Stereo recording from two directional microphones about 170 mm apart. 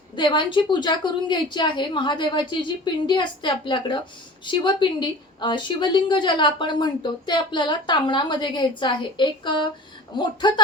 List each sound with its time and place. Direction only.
0.2 s a woman's voice: 30° left (ahead or behind)